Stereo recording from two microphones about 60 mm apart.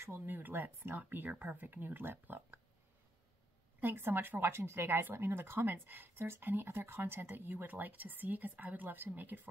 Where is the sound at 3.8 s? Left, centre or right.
Right.